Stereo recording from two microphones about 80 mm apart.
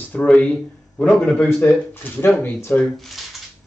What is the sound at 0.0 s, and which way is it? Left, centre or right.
A man's voice, centre.